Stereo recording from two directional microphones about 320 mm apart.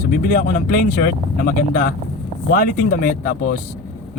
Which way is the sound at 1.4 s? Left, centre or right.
Left.